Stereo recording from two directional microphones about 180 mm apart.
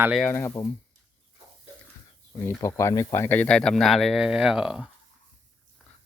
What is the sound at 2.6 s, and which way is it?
Speech, 15° left (ahead or behind).